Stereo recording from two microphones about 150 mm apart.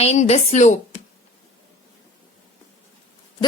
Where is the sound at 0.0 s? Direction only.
45° left (ahead or behind).